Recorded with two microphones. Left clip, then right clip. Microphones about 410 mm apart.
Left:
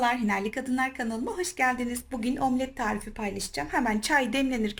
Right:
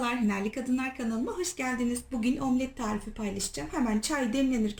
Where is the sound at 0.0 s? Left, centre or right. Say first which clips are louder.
Left 4 dB; centre.